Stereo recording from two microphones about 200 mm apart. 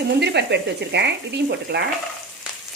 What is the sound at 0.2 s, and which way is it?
Speech, 55° right (ahead or behind).